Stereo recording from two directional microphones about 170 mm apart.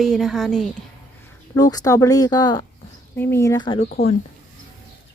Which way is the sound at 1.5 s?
20° left (ahead or behind).